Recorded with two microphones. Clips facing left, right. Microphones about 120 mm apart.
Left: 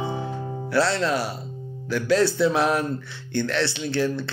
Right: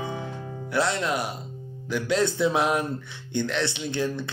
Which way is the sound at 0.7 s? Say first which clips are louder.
Left 3 dB; 20° right (ahead or behind).